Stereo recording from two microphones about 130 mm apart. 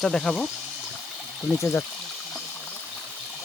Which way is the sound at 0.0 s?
5° left (ahead or behind).